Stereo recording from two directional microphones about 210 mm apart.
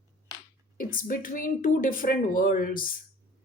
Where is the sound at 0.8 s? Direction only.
40° left (ahead or behind).